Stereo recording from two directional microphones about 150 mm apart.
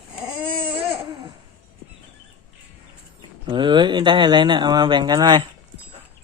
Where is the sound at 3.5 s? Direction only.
30° right (ahead or behind).